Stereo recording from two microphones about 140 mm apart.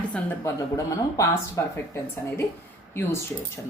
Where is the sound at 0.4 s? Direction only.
25° left (ahead or behind).